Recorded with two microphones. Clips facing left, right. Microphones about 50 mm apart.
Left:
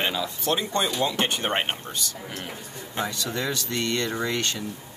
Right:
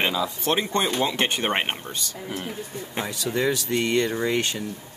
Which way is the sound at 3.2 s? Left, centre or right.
Right.